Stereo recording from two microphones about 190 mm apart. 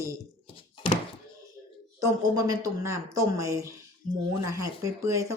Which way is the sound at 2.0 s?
20° right (ahead or behind).